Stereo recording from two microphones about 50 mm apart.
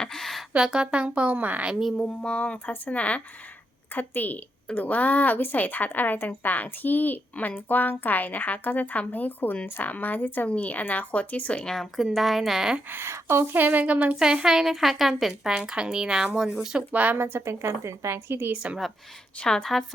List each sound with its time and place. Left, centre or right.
0.0 s a sound: centre
0.5 s speech: centre; by 1.7 s right
2.2 s speech: left
3.9 s a woman's voice: left
10.5 s speech: left
11.6 s a woman's voice: centre
12.9 s a woman's voice: right
13.5 s speech: right
14.4 s speech: centre
16.9 s speech: right
17.2 s a woman's voice: right
18.5 s speech: right
19.4 s a woman's voice: centre